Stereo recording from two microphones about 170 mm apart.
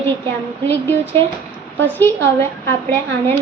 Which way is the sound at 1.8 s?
10° left (ahead or behind).